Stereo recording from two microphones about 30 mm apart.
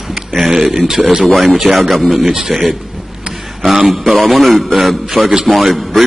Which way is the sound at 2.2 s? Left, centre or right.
Centre.